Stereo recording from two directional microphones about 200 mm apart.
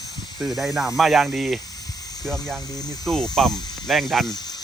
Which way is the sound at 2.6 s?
20° left (ahead or behind).